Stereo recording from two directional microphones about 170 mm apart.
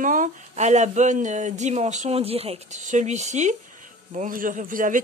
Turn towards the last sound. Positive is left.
turn(degrees=-50)  # may be behind; listen again after turning